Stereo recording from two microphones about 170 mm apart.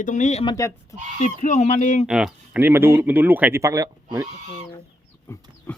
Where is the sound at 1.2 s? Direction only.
45° left (ahead or behind).